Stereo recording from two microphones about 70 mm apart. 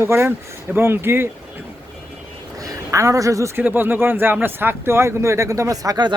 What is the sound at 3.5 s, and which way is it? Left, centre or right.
Speech, right.